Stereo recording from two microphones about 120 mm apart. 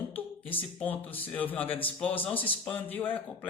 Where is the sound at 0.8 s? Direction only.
15° left (ahead or behind).